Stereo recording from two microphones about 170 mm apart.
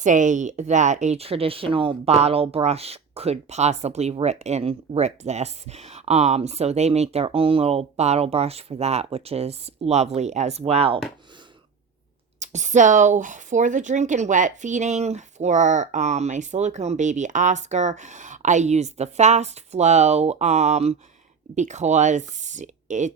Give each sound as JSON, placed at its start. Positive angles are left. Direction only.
{"t": 0.0, "sound": "speech", "side_deg": -45}
{"t": 12.4, "sound": "speech", "side_deg": -45}